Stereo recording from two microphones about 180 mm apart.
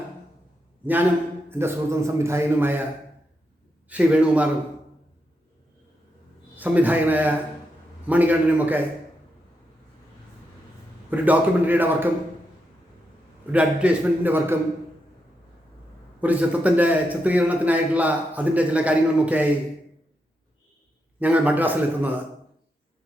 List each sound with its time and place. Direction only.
1.5 s a man's voice: 15° right (ahead or behind)
3.8 s a man's voice: 5° right (ahead or behind)
6.6 s a man's voice: 10° right (ahead or behind)
11.1 s a man's voice: 10° right (ahead or behind)
13.5 s a man's voice: 5° right (ahead or behind)
16.2 s a man's voice: 10° right (ahead or behind)
21.2 s a man's voice: 10° right (ahead or behind)